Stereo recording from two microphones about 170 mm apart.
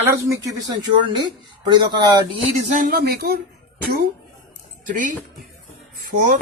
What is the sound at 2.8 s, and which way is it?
Speech, 65° right (ahead or behind).